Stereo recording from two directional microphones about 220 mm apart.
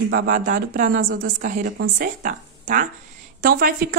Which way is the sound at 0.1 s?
40° right (ahead or behind).